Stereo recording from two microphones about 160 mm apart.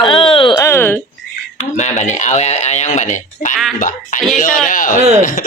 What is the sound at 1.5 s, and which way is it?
A man's voice, 45° left (ahead or behind).